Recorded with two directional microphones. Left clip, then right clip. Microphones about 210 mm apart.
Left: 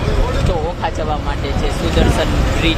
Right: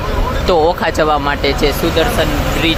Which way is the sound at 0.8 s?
35° right (ahead or behind).